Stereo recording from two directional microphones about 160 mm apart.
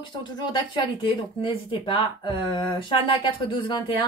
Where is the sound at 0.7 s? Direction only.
30° left (ahead or behind).